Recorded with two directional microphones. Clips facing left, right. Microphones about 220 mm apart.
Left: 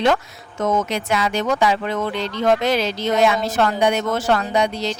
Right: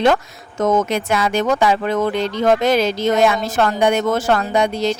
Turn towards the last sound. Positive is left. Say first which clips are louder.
# right 3 dB
turn(degrees=-50)  # may be behind; listen again after turning